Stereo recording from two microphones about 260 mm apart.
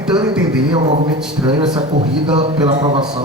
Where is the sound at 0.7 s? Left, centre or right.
Centre.